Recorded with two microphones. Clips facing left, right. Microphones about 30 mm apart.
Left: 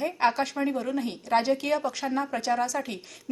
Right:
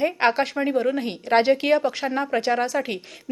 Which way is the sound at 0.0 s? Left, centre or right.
Right.